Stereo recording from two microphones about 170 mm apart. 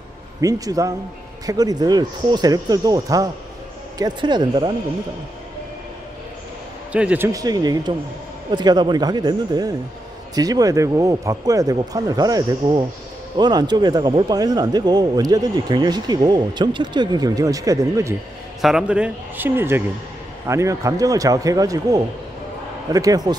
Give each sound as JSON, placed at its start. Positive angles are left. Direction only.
{"t": 0.4, "sound": "speech", "side_deg": -20}
{"t": 6.9, "sound": "speech", "side_deg": -10}
{"t": 18.6, "sound": "speech", "side_deg": 0}